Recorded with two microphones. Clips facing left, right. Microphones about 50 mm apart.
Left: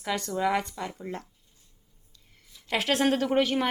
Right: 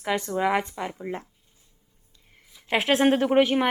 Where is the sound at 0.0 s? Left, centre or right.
Right.